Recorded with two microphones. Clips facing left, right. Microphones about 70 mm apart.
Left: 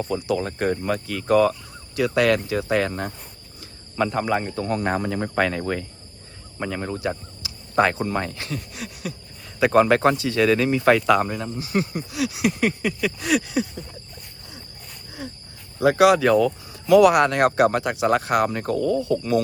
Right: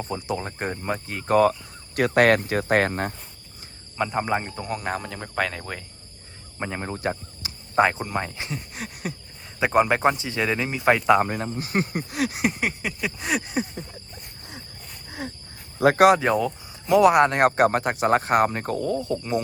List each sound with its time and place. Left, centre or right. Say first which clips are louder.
0.1 s a sound: left 4 dB; right
2.0 s speech: right 1 dB; right
3.9 s speech: left 2 dB; centre
4.7 s speech: left 5 dB; centre
6.6 s a sound: left 3 dB; right
7.4 s cricket: right 1 dB; right
7.8 s speech: left 1 dB; centre
8.7 s speech: even; right
9.6 s speech: left 3 dB; centre
11.3 s speech: even; right
12.5 s a sound: left 5 dB; centre; by 13.8 s right
14.2 s a sound: right 1 dB; right
15.2 s speech: right 1 dB; right
16.3 s speech: left 5 dB; centre; by 19.2 s right